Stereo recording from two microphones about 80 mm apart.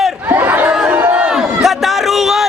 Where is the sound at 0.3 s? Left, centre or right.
Right.